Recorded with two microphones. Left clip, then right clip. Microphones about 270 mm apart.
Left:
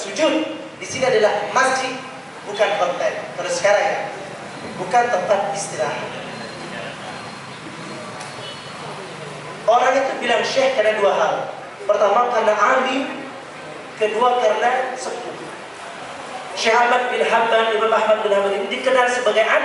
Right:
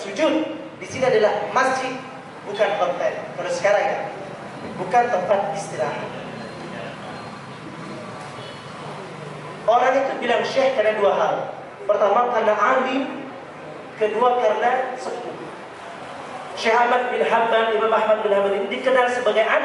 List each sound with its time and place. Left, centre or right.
0.9 s a woman's voice: centre
9.8 s speech: centre
14.0 s speech: centre
16.7 s speech: centre